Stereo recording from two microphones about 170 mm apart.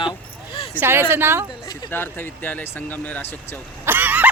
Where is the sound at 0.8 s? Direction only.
15° right (ahead or behind).